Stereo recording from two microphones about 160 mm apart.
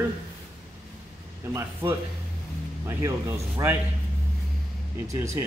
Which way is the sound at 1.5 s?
15° right (ahead or behind).